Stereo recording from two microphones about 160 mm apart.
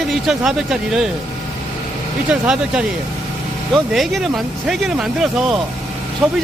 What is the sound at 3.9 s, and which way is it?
Speech, centre (ahead or behind).